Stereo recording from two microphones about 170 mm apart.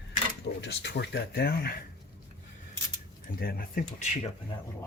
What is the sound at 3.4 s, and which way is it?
Speech, 60° left (ahead or behind).